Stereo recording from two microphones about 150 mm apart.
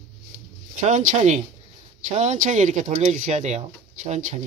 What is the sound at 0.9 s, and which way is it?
Speech, 50° right (ahead or behind).